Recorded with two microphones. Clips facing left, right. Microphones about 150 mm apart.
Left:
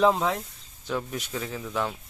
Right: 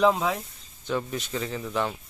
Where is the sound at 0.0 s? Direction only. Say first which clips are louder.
Even; centre (ahead or behind).